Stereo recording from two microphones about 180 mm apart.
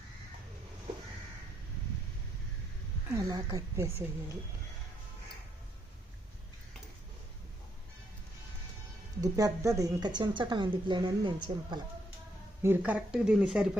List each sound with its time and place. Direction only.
3.1 s a woman's voice: 20° right (ahead or behind)
9.2 s a woman's voice: 20° right (ahead or behind)
12.6 s speech: 10° right (ahead or behind)